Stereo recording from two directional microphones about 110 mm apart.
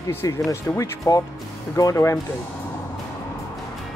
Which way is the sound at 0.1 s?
25° left (ahead or behind).